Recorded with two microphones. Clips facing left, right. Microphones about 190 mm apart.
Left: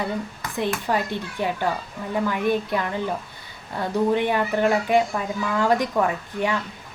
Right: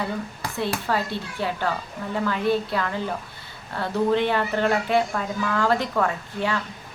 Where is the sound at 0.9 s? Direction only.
15° left (ahead or behind).